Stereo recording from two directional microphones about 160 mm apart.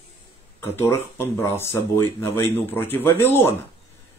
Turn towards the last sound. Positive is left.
turn(degrees=15)  # may be behind; listen again after turning